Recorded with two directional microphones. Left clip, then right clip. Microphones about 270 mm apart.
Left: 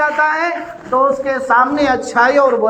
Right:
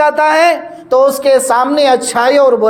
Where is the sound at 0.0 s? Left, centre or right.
Right.